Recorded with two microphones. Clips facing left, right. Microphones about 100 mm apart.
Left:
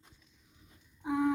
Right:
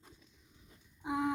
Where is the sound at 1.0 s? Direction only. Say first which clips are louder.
Left 4 dB; 10° right (ahead or behind).